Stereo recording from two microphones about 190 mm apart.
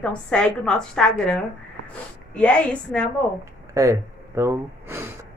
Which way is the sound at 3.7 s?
15° right (ahead or behind).